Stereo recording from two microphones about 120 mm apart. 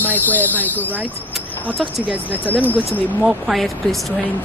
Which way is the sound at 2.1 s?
15° right (ahead or behind).